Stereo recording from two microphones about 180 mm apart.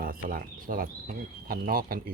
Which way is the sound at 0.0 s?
55° right (ahead or behind).